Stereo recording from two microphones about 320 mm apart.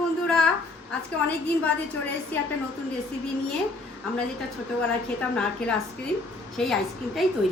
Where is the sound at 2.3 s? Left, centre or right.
Centre.